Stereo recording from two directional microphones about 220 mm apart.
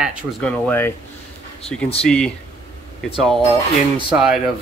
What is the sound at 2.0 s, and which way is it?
Speech, 5° left (ahead or behind).